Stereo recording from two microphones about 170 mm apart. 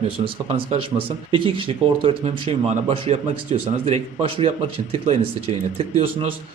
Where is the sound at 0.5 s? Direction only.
30° right (ahead or behind).